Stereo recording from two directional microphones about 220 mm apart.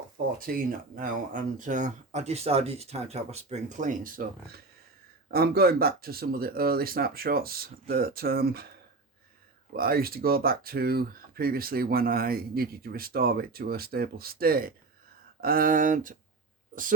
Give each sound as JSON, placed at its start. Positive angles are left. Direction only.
{"t": 0.3, "sound": "speech", "side_deg": -40}
{"t": 9.7, "sound": "speech", "side_deg": -45}